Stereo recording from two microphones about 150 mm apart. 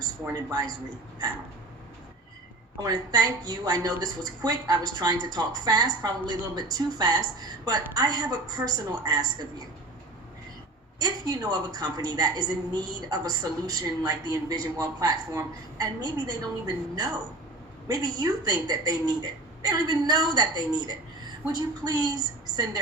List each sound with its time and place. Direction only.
0.3 s a woman's voice: 30° right (ahead or behind)
2.8 s a woman's voice: 25° right (ahead or behind)
11.0 s a woman's voice: 25° right (ahead or behind)